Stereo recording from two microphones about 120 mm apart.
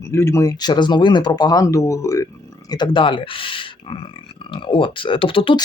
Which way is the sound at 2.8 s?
45° left (ahead or behind).